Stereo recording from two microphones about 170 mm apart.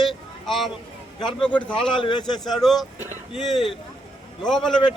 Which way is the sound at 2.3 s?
Centre (ahead or behind).